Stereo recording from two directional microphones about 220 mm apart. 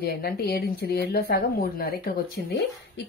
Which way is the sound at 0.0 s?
45° left (ahead or behind).